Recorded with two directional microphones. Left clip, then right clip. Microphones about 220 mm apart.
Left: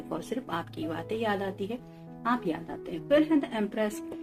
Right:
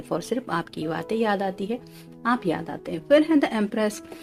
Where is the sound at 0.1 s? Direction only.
50° right (ahead or behind).